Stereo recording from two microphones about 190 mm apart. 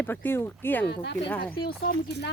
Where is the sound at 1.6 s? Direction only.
50° left (ahead or behind).